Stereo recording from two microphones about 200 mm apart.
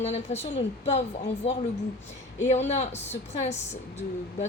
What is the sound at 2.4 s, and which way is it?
A woman's voice, 35° left (ahead or behind).